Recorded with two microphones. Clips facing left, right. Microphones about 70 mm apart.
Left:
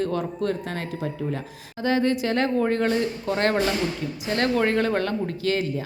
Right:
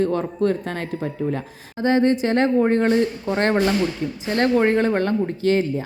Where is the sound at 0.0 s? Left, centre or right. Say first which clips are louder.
Right 5 dB; right.